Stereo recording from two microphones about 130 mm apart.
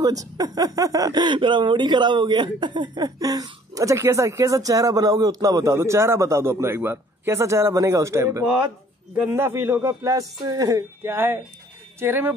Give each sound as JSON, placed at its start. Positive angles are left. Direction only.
{"t": 0.0, "sound": "speech", "side_deg": -30}